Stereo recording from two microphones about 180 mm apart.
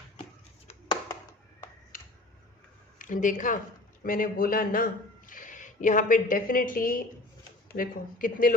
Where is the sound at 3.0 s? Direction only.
45° left (ahead or behind).